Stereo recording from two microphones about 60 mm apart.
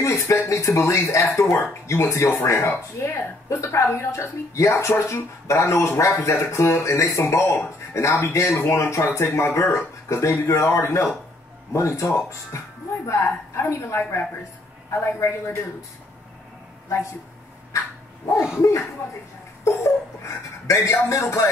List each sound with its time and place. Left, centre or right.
0.0 s speech: left
1.2 s speech: left
17.7 s dog: left
19.6 s speech: left